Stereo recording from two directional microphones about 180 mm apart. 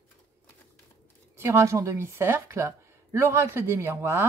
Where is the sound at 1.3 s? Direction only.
15° right (ahead or behind).